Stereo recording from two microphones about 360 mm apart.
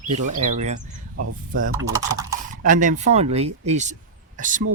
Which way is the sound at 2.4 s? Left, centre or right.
Right.